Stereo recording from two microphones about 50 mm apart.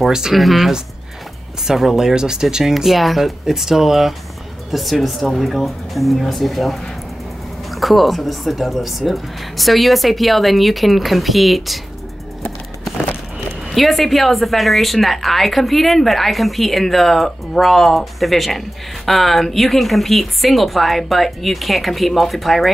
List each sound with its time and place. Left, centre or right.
0.1 s a woman's voice: centre
13.7 s a woman's voice: centre